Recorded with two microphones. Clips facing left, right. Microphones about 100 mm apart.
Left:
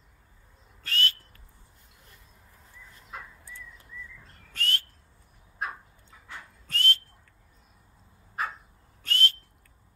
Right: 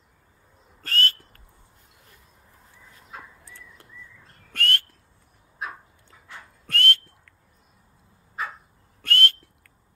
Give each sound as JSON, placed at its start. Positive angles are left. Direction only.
{"t": 0.8, "sound": "whistle", "side_deg": -45}
{"t": 4.5, "sound": "whistling", "side_deg": -60}
{"t": 6.7, "sound": "whistling", "side_deg": -65}
{"t": 9.0, "sound": "whistling", "side_deg": -60}